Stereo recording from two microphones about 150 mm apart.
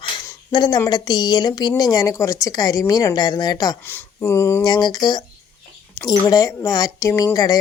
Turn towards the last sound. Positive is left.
turn(degrees=25)  # may be behind; listen again after turning